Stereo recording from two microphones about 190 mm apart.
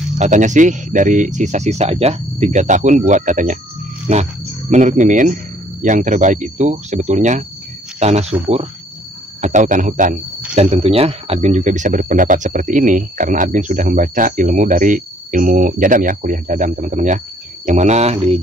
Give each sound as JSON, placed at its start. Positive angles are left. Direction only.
{"t": 0.2, "sound": "speech", "side_deg": -40}
{"t": 9.4, "sound": "speech", "side_deg": -40}
{"t": 10.5, "sound": "speech", "side_deg": -30}